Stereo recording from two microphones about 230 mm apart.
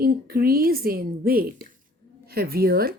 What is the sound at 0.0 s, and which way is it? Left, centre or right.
A woman's voice, right.